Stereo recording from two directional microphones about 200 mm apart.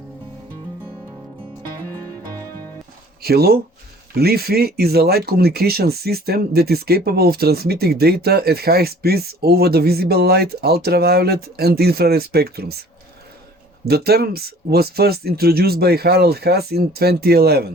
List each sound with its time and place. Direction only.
3.2 s speech: 50° right (ahead or behind)
13.8 s speech: 50° right (ahead or behind)